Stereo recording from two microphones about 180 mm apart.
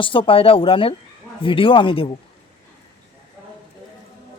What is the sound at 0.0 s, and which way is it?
Speech, 30° left (ahead or behind).